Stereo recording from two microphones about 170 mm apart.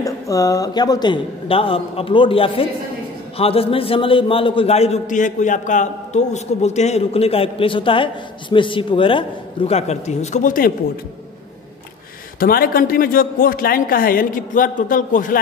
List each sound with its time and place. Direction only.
0.0 s a man's voice: 20° left (ahead or behind); by 10.7 s 50° left (ahead or behind)
12.4 s a man's voice: 60° left (ahead or behind)